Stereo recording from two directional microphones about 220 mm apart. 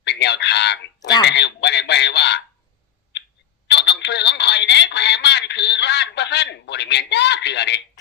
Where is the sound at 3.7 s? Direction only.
50° left (ahead or behind).